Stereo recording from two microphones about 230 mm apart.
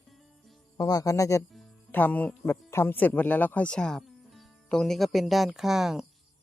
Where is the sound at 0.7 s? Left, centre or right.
Centre.